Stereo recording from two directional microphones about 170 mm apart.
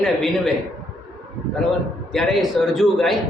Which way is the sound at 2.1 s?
Centre (ahead or behind).